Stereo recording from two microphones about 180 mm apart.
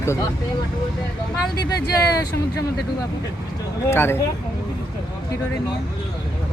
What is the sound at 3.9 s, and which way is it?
Speech, 15° left (ahead or behind).